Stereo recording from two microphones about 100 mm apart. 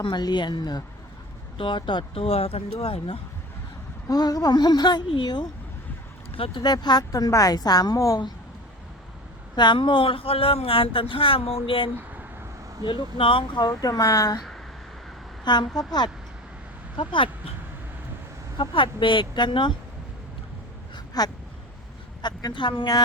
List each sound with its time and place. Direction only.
0.0 s speech: 45° left (ahead or behind)
1.5 s speech: 55° left (ahead or behind); by 3.2 s 70° left (ahead or behind)
4.1 s speech: 40° left (ahead or behind)
6.3 s speech: 65° left (ahead or behind)
6.6 s a woman's voice: 45° left (ahead or behind)
9.6 s speech: 50° left (ahead or behind)
15.4 s speech: 45° left (ahead or behind)
17.0 s speech: 60° left (ahead or behind)
18.5 s speech: 55° left (ahead or behind)
20.9 s a sound: 40° left (ahead or behind)
22.2 s speech: 45° left (ahead or behind)